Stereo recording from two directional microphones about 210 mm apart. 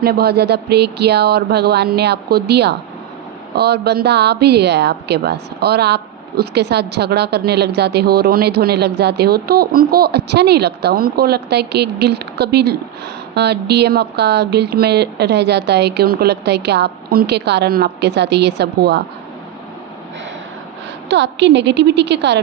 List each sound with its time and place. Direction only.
0.0 s a woman's voice: 50° right (ahead or behind)
21.1 s a woman's voice: 55° right (ahead or behind)